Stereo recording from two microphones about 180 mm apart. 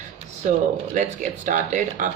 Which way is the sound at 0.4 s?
40° right (ahead or behind).